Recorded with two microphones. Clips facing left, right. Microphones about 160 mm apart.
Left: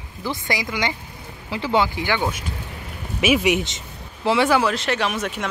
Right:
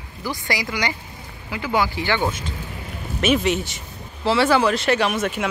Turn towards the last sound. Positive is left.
turn(degrees=-5)  # may be behind; listen again after turning